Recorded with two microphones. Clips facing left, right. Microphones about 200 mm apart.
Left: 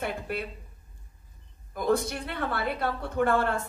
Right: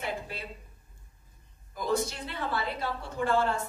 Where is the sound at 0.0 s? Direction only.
55° left (ahead or behind).